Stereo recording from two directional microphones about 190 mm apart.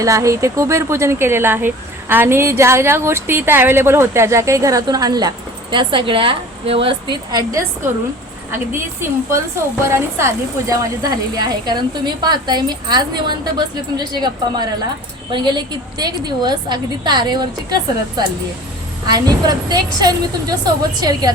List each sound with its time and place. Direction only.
0.0 s a woman's voice: 15° right (ahead or behind)
8.7 s a woman's voice: 15° right (ahead or behind)
19.0 s a woman's voice: 20° right (ahead or behind)